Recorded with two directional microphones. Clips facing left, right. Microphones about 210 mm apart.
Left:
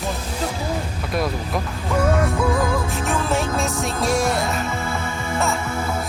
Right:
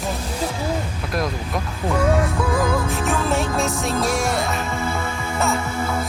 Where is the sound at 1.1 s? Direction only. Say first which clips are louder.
Left 2 dB; centre (ahead or behind).